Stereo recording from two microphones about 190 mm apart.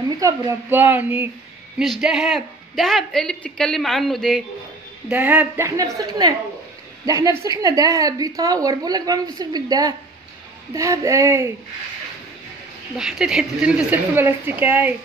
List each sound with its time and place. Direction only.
0.2 s a woman's voice: 15° right (ahead or behind)
5.0 s a woman's voice: 10° right (ahead or behind)
12.9 s a woman's voice: 5° right (ahead or behind)